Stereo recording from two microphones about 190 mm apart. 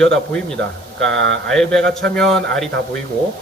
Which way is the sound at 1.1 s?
75° right (ahead or behind).